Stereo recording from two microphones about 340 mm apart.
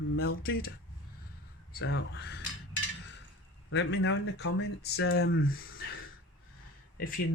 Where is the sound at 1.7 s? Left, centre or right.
Left.